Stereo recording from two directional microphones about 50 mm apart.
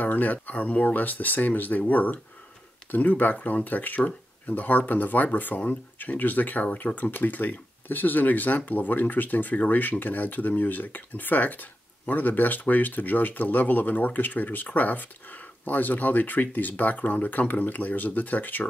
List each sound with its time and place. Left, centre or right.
0.0 s speech: left